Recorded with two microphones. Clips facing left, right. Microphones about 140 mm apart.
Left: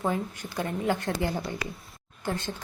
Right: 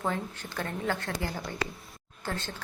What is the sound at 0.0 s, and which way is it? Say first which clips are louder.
A woman's voice: left 3 dB; 15° left (ahead or behind).